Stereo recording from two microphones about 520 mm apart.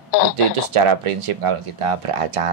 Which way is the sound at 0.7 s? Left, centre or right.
Right.